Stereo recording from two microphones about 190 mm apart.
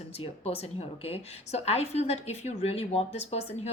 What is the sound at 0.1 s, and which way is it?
Speech, 30° left (ahead or behind).